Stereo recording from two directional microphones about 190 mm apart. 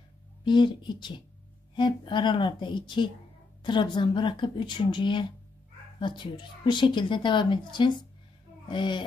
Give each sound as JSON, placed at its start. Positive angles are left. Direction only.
{"t": 0.5, "sound": "a woman's voice", "side_deg": 25}